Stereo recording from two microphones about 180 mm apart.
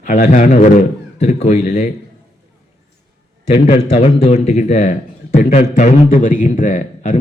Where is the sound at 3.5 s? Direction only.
35° left (ahead or behind).